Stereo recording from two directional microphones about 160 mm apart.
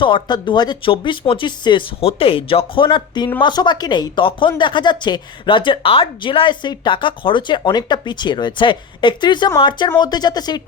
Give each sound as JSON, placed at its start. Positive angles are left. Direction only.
{"t": 0.0, "sound": "speech", "side_deg": 30}